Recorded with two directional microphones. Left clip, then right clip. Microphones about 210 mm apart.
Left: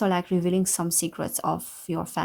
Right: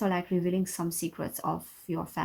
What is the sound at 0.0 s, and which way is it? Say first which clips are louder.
Speech: left 5 dB; 45° left (ahead or behind).